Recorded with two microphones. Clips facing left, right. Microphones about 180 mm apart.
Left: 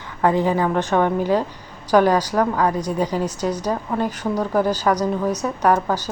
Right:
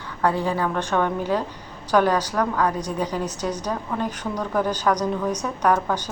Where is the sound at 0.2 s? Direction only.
15° left (ahead or behind).